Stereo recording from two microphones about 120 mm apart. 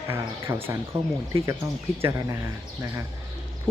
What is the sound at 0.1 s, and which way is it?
Speech, 25° right (ahead or behind).